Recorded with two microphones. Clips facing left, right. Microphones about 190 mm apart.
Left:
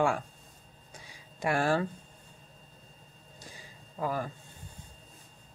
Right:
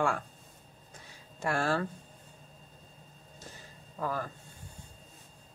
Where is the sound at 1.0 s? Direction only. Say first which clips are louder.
Left 2 dB; 15° left (ahead or behind).